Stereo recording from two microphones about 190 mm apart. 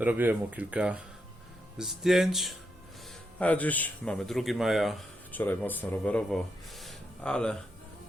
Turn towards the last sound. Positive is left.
turn(degrees=5)  # may be behind; listen again after turning